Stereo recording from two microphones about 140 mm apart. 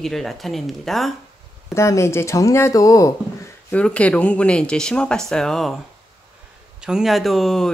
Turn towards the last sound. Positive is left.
turn(degrees=0)  # may be behind; listen again after turning